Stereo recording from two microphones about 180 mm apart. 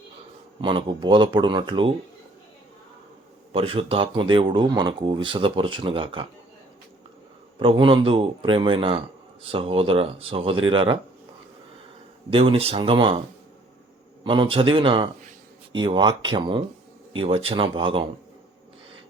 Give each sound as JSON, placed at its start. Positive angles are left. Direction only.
{"t": 0.6, "sound": "speech", "side_deg": -25}
{"t": 3.5, "sound": "speech", "side_deg": -30}
{"t": 7.6, "sound": "speech", "side_deg": -30}
{"t": 12.3, "sound": "speech", "side_deg": -30}
{"t": 14.3, "sound": "speech", "side_deg": -30}